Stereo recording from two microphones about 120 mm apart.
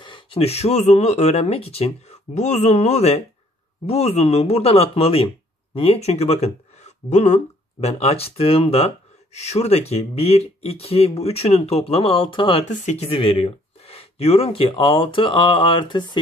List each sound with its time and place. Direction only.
0.0 s speech: 45° left (ahead or behind)
12.6 s speech: 70° left (ahead or behind); by 16.2 s 40° left (ahead or behind)